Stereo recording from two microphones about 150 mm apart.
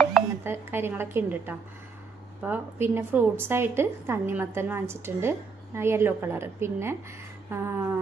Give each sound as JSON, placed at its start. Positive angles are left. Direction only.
{"t": 0.4, "sound": "a woman's voice", "side_deg": -15}